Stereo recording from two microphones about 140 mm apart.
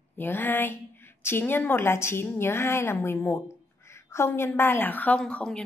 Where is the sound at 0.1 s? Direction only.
15° left (ahead or behind).